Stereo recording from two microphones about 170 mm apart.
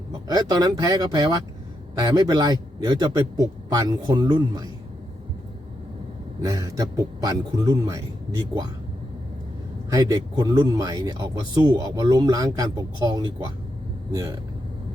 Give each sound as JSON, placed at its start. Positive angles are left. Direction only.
{"t": 0.3, "sound": "speech", "side_deg": -20}
{"t": 6.4, "sound": "speech", "side_deg": -20}
{"t": 9.9, "sound": "speech", "side_deg": -20}